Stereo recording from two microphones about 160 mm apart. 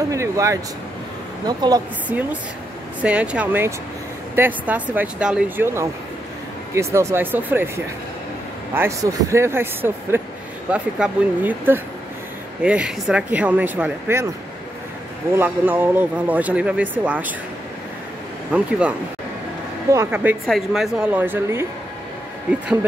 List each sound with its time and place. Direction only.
0.1 s speech: 20° right (ahead or behind)
3.0 s speech: 5° right (ahead or behind)
15.3 s speech: 10° right (ahead or behind)
18.5 s speech: 10° right (ahead or behind)
20.4 s speech: centre (ahead or behind)